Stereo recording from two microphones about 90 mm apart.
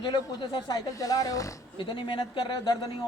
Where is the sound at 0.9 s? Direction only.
40° left (ahead or behind).